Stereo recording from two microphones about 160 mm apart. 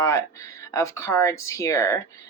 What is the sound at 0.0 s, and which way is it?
Speech, 20° left (ahead or behind).